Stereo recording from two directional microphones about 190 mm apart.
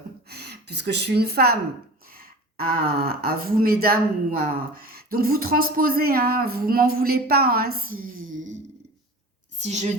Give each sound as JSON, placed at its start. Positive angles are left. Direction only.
{"t": 0.3, "sound": "speech", "side_deg": -60}
{"t": 9.6, "sound": "a woman's voice", "side_deg": -35}